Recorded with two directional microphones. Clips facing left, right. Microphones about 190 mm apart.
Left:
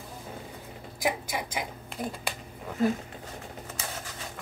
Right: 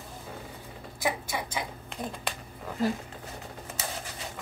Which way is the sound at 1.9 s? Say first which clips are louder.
Left 1 dB; 5° left (ahead or behind).